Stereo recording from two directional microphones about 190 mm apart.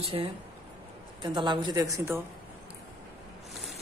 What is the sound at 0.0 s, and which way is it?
A woman's voice, 30° right (ahead or behind).